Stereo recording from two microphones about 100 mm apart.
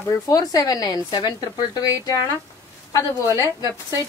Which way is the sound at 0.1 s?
40° left (ahead or behind).